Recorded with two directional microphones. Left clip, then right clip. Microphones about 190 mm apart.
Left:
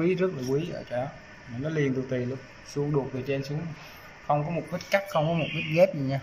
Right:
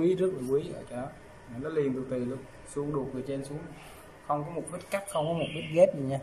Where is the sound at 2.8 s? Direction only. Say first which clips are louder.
Left 3 dB; 15° left (ahead or behind).